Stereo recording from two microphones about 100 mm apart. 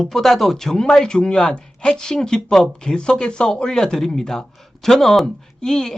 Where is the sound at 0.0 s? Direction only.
Centre (ahead or behind).